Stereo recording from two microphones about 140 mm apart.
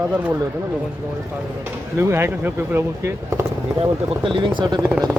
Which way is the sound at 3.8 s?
40° right (ahead or behind).